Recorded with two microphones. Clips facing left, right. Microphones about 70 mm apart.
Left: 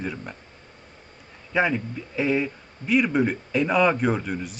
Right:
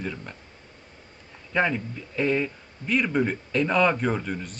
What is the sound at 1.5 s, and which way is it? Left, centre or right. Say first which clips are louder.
A man's voice: left 2 dB; centre.